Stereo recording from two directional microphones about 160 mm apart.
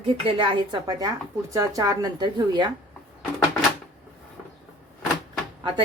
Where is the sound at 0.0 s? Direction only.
35° right (ahead or behind).